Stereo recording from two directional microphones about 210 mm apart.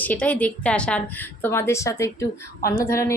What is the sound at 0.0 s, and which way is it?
A woman's voice, 10° left (ahead or behind).